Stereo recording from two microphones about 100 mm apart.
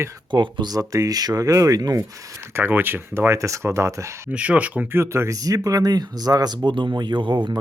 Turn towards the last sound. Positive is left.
turn(degrees=-50)  # may be behind; listen again after turning